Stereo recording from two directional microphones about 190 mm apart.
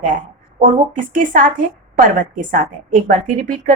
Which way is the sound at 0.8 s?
45° right (ahead or behind).